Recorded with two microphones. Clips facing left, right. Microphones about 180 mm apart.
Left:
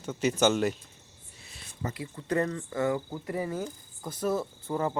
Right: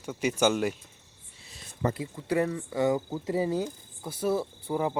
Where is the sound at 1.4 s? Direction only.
35° right (ahead or behind).